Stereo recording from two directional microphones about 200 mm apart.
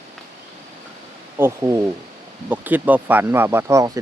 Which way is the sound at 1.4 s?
15° right (ahead or behind).